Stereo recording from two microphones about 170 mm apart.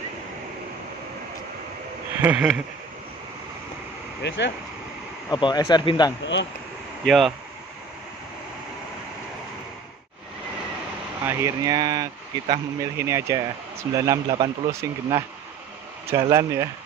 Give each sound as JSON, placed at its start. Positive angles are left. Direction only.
{"t": 2.2, "sound": "speech", "side_deg": -5}
{"t": 4.2, "sound": "speech", "side_deg": 90}
{"t": 5.3, "sound": "speech", "side_deg": 25}
{"t": 7.1, "sound": "speech", "side_deg": 0}
{"t": 11.2, "sound": "speech", "side_deg": -20}